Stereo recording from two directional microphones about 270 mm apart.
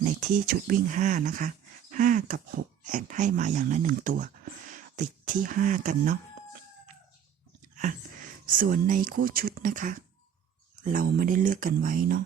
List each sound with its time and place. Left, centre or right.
0.0 s speech: right
7.8 s speech: right